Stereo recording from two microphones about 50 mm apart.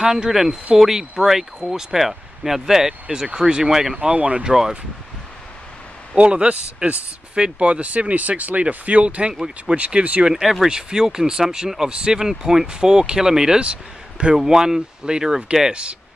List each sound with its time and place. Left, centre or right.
0.0 s speech: centre
4.1 s speech: right
4.5 s speech: centre
6.1 s speech: right
9.8 s speech: right
10.2 s speech: centre